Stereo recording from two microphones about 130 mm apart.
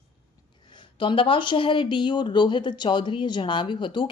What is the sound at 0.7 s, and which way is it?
Speech, 40° left (ahead or behind).